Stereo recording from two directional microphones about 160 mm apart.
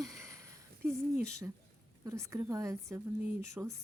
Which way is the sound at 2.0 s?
20° right (ahead or behind).